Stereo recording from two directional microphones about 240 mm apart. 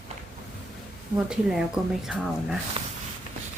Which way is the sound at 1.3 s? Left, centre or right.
Centre.